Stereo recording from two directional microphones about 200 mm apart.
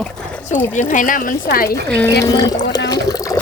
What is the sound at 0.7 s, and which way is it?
Speech, 40° left (ahead or behind).